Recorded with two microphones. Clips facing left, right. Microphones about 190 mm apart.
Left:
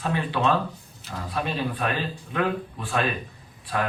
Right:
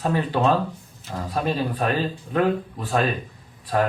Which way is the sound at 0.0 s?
40° right (ahead or behind).